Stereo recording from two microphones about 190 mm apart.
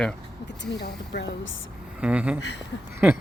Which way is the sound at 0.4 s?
65° left (ahead or behind).